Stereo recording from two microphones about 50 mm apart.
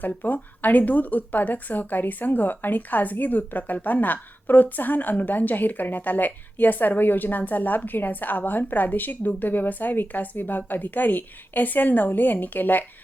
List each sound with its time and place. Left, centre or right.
0.0 s speech: left